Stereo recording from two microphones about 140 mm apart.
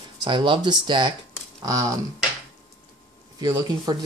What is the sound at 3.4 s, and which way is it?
Speech, 30° right (ahead or behind).